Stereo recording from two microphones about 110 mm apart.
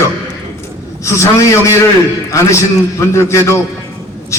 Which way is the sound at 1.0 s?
25° left (ahead or behind).